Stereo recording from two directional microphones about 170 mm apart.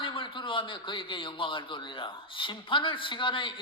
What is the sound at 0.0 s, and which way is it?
A man's voice, 30° left (ahead or behind).